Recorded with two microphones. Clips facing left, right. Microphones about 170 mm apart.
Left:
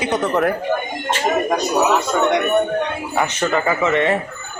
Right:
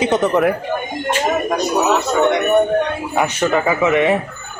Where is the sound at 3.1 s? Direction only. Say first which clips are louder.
Right 2 dB; 10° right (ahead or behind).